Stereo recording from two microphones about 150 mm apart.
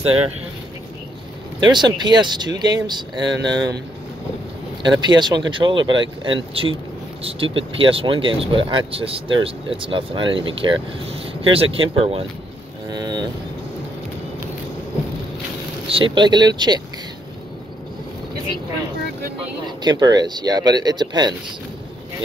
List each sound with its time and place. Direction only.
0.0 s speech: 40° right (ahead or behind)
1.7 s speech: 30° right (ahead or behind)
4.8 s speech: 30° right (ahead or behind)
12.9 s vehicle: 25° right (ahead or behind)
15.9 s speech: 35° right (ahead or behind)
19.6 s speech: 30° right (ahead or behind)